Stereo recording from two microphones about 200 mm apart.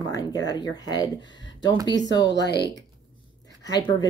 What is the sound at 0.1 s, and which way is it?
Speech, 20° left (ahead or behind).